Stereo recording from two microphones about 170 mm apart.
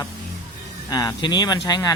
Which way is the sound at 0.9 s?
25° left (ahead or behind).